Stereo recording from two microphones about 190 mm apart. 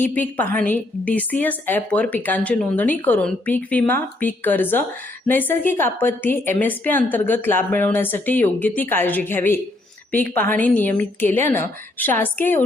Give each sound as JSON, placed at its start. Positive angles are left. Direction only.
{"t": 0.0, "sound": "a woman's voice", "side_deg": 10}